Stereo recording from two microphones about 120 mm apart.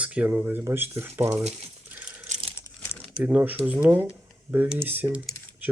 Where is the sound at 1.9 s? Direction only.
15° right (ahead or behind).